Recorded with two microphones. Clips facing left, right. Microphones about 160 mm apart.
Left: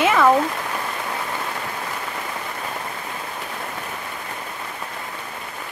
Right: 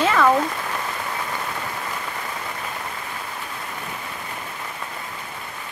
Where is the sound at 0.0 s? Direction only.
10° left (ahead or behind).